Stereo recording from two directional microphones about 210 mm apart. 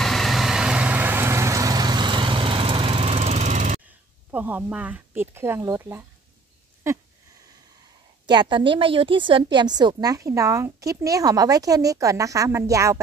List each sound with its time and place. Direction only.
0.0 s vehicle: centre (ahead or behind); by 3.8 s 35° right (ahead or behind)
3.8 s speech: 10° right (ahead or behind)
8.3 s a woman's voice: 20° right (ahead or behind)